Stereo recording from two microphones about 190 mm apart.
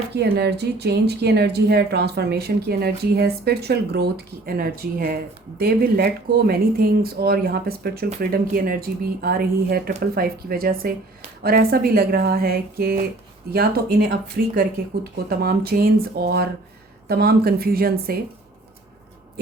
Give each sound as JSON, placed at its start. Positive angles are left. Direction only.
{"t": 0.1, "sound": "speech", "side_deg": -60}